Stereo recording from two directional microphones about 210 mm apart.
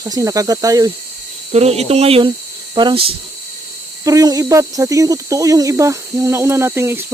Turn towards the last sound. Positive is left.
turn(degrees=-10)  # may be behind; listen again after turning